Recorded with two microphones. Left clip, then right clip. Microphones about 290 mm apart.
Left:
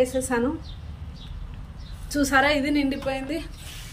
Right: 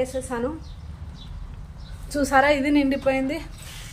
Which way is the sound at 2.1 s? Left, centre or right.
Centre.